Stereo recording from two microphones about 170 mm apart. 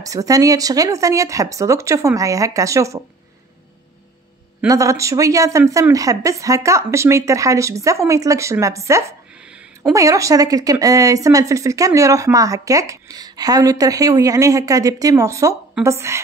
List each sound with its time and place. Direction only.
0.0 s speech: 20° right (ahead or behind)
4.6 s speech: 20° right (ahead or behind)